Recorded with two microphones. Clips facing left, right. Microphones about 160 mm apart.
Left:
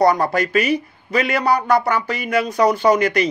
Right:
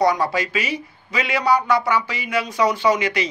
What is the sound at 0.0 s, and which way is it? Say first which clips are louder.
Speech: left 3 dB; 50° left (ahead or behind).